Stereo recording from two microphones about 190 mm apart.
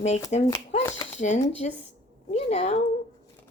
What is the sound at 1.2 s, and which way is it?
A woman's voice, 40° left (ahead or behind).